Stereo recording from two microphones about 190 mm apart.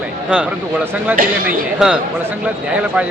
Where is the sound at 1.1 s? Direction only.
50° right (ahead or behind).